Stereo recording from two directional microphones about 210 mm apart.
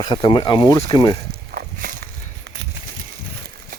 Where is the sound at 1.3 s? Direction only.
45° right (ahead or behind).